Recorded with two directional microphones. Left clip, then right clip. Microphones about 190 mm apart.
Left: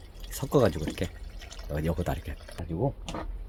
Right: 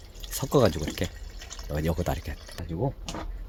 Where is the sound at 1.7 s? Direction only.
25° right (ahead or behind).